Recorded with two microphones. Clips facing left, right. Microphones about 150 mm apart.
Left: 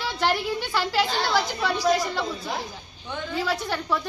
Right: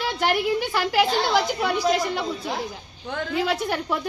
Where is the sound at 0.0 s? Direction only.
15° right (ahead or behind).